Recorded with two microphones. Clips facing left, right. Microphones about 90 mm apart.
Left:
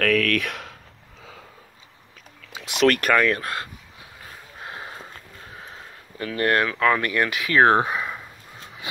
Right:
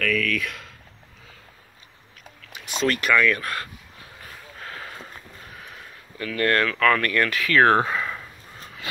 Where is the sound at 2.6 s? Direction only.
85° left.